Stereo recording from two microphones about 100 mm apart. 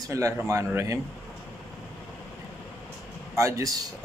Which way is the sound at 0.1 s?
30° right (ahead or behind).